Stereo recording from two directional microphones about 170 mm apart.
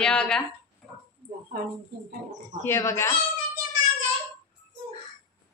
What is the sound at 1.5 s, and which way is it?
Speech, 65° right (ahead or behind).